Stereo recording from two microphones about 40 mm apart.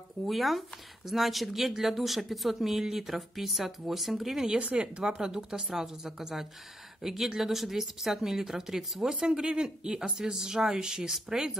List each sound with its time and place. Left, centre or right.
0.3 s speech: centre
4.6 s speech: right
5.2 s a woman's voice: centre